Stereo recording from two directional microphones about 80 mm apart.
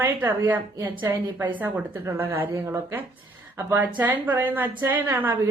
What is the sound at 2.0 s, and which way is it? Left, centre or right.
Speech, right.